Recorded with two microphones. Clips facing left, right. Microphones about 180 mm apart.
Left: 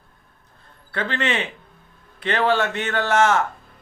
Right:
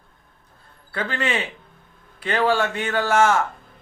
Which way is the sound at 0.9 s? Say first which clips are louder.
Left 1 dB; 10° right (ahead or behind).